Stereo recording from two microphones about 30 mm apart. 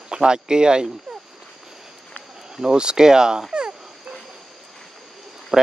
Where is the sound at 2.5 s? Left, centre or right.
Right.